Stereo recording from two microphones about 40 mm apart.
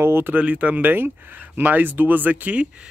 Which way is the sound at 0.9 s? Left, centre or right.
Right.